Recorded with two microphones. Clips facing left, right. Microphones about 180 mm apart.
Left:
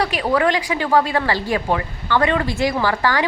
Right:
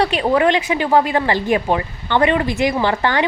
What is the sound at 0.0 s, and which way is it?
A woman's voice, 25° right (ahead or behind).